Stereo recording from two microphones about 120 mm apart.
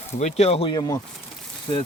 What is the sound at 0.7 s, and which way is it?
Speech, 35° left (ahead or behind).